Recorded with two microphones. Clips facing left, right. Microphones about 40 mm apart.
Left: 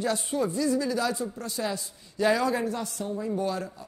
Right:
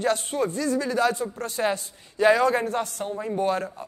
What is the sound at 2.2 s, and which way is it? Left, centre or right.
Speech, right.